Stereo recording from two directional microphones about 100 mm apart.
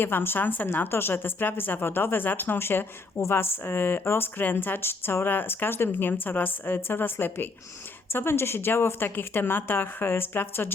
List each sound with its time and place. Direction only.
0.0 s a woman's voice: 20° left (ahead or behind)